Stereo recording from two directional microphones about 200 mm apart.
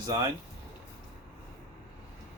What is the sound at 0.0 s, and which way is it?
Speech, 20° right (ahead or behind).